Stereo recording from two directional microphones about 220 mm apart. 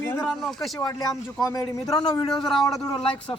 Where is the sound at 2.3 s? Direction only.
Centre (ahead or behind).